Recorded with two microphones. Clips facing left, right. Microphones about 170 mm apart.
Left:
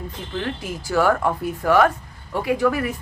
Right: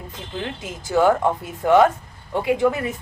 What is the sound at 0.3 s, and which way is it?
A woman's voice, 20° right (ahead or behind).